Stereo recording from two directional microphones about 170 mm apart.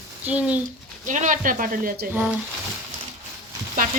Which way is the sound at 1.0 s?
50° right (ahead or behind).